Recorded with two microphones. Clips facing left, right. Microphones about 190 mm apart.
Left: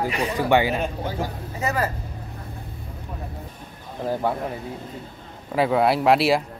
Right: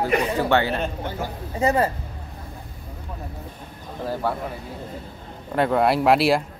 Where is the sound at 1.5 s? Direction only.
30° right (ahead or behind).